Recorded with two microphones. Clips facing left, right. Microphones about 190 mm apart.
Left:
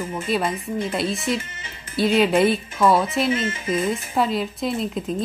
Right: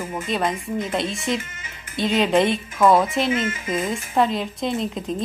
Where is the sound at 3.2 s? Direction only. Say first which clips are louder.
Even; 30° left (ahead or behind).